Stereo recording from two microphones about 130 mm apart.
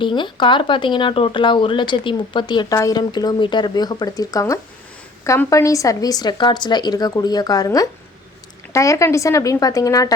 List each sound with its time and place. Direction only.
0.0 s speech: 35° left (ahead or behind)